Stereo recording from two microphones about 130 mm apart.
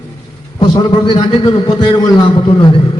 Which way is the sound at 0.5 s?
35° left (ahead or behind).